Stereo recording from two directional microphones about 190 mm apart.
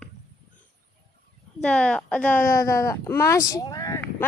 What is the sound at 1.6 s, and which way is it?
Speech, 5° left (ahead or behind).